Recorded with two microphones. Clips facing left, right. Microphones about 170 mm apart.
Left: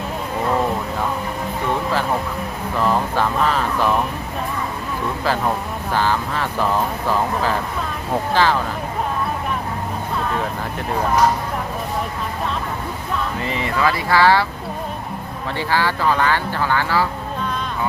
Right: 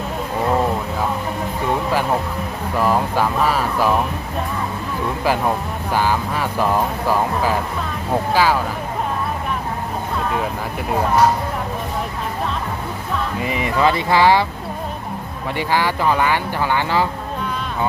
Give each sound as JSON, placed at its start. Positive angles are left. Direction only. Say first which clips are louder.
{"t": 2.8, "sound": "speech", "louder": "right 1 dB", "side_deg": -10}
{"t": 5.9, "sound": "speech", "louder": "right 1 dB", "side_deg": -10}
{"t": 13.4, "sound": "speech", "louder": "right 4 dB", "side_deg": -15}
{"t": 15.5, "sound": "speech", "louder": "right 1 dB", "side_deg": -15}